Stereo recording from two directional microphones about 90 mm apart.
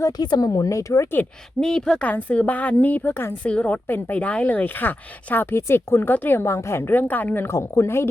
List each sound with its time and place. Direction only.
0.2 s speech: 50° left (ahead or behind)
1.6 s a woman's voice: 5° left (ahead or behind); by 3.3 s 25° left (ahead or behind)
3.4 s speech: 15° left (ahead or behind); by 8.1 s 30° left (ahead or behind)